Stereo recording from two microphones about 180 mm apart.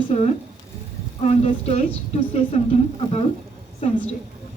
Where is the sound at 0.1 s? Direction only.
35° left (ahead or behind).